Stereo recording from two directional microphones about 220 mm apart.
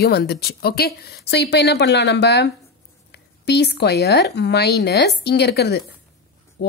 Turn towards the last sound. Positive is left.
turn(degrees=50)  # may be behind; listen again after turning